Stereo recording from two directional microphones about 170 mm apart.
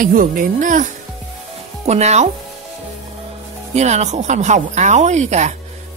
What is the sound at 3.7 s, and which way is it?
Speech, 40° right (ahead or behind).